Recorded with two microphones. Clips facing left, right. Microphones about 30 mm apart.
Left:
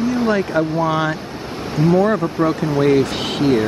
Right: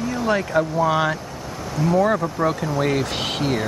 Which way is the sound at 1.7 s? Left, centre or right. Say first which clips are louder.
Left 5 dB; left.